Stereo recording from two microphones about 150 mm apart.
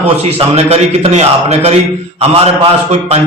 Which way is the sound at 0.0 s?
45° right (ahead or behind).